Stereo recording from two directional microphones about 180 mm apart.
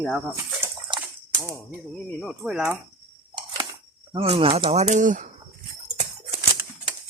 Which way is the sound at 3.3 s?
25° right (ahead or behind).